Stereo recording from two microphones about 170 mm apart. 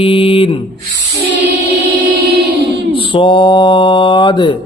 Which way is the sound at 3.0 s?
30° left (ahead or behind).